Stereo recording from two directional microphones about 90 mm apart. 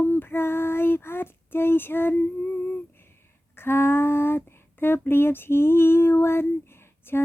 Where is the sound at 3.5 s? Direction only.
25° left (ahead or behind).